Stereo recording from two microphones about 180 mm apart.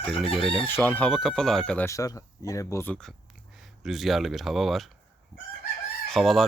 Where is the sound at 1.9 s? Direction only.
20° left (ahead or behind); by 4.9 s centre (ahead or behind).